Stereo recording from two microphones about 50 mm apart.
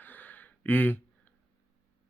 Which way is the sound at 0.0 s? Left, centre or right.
Left.